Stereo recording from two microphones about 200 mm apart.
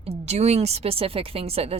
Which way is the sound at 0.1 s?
30° right (ahead or behind).